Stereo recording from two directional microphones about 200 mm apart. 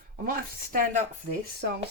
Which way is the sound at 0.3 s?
40° right (ahead or behind).